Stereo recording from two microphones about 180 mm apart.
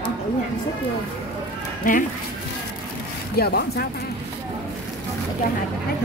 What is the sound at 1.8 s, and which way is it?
Speech, 50° left (ahead or behind).